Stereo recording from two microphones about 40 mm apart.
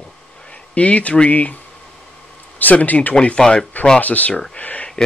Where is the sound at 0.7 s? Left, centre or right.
Left.